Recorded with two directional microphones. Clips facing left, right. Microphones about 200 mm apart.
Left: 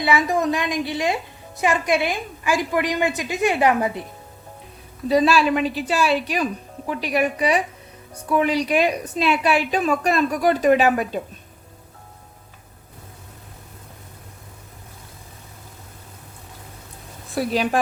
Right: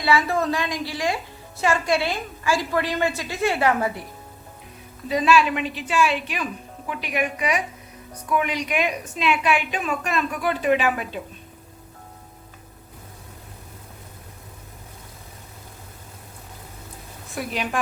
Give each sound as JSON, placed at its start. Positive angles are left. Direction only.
{"t": 0.0, "sound": "a woman's voice", "side_deg": 20}
{"t": 5.0, "sound": "a woman's voice", "side_deg": 35}
{"t": 17.3, "sound": "a woman's voice", "side_deg": 35}